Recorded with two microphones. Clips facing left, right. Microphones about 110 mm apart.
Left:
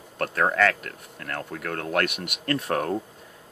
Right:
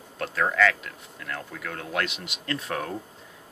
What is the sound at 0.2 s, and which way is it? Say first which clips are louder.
Speech: left 1 dB; 50° left (ahead or behind).